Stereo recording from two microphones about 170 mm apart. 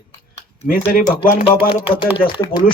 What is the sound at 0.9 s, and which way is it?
Speech, 55° left (ahead or behind).